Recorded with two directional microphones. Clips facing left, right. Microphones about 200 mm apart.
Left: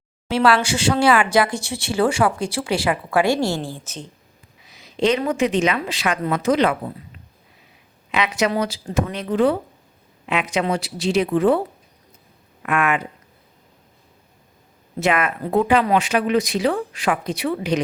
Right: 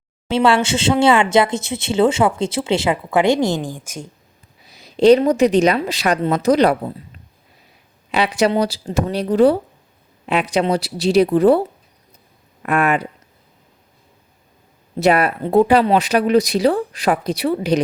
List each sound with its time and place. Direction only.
0.3 s speech: 25° right (ahead or behind)
4.6 s speech: 35° right (ahead or behind)
8.1 s speech: 30° right (ahead or behind)
12.6 s speech: 35° right (ahead or behind)
14.9 s speech: 35° right (ahead or behind)